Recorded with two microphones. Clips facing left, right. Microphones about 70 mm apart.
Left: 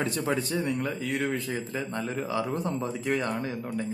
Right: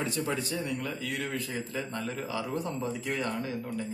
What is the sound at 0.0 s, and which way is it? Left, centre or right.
A man's voice, left.